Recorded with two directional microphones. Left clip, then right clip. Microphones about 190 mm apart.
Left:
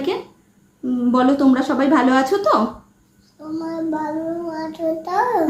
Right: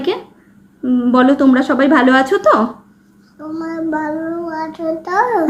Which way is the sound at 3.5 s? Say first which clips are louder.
Right 4 dB; 5° left (ahead or behind).